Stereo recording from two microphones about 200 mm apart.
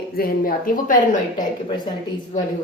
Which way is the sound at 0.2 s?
45° left (ahead or behind).